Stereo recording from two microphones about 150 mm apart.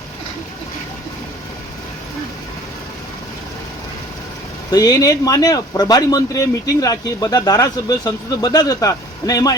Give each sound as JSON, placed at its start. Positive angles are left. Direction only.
{"t": 4.7, "sound": "speech", "side_deg": 25}